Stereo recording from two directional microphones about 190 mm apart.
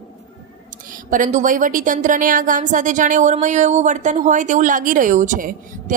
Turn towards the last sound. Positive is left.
turn(degrees=-40)  # may be behind; listen again after turning